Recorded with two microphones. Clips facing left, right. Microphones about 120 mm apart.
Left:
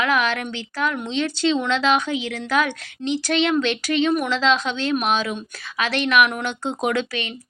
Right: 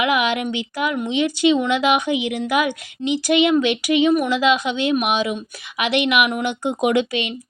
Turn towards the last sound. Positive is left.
turn(degrees=-20)  # may be behind; listen again after turning